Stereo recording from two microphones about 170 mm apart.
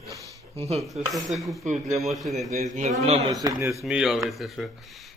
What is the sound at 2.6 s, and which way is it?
Speech, 45° right (ahead or behind).